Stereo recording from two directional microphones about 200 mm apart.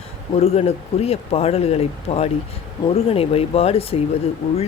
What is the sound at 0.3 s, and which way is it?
A man's voice, 30° left (ahead or behind).